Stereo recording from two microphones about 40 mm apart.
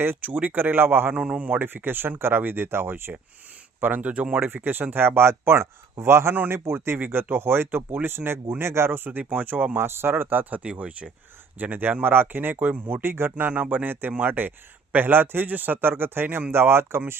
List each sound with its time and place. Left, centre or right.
0.2 s speech: right
1.1 s speech: right
1.5 s speech: right
3.8 s speech: right
4.4 s speech: right
7.1 s speech: right
7.9 s speech: right
9.7 s speech: right
10.5 s speech: right
11.6 s speech: right
12.0 s speech: right
12.5 s speech: right
13.5 s speech: right
16.5 s speech: right